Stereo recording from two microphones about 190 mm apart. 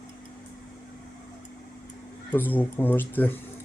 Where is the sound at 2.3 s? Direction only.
10° left (ahead or behind).